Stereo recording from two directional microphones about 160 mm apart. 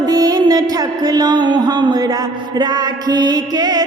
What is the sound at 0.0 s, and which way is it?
Music, 25° right (ahead or behind).